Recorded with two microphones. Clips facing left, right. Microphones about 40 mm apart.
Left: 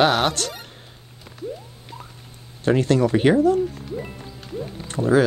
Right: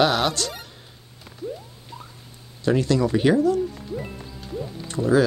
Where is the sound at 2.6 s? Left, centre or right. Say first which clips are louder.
Left 2 dB; left.